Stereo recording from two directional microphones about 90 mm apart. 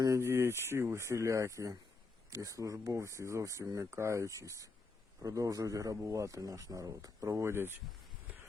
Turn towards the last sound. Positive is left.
turn(degrees=-25)  # may be behind; listen again after turning